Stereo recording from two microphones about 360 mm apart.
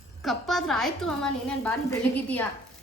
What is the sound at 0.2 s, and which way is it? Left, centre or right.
A woman's voice, centre.